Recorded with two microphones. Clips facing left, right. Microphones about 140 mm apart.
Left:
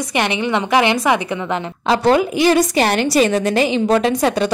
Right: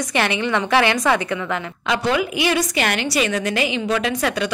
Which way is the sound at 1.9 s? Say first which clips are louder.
Left 6 dB; 40° left (ahead or behind).